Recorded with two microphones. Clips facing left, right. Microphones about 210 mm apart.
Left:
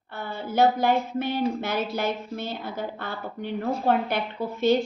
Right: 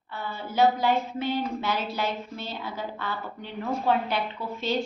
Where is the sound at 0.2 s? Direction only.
55° left (ahead or behind).